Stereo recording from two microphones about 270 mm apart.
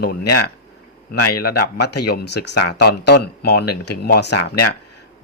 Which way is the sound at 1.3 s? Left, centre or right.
Left.